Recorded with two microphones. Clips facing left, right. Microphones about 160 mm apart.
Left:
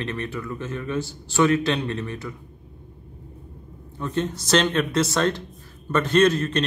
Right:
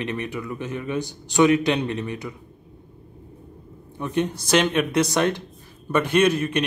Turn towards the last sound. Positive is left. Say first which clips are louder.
# left 1 dB
turn(degrees=-10)  # may be behind; listen again after turning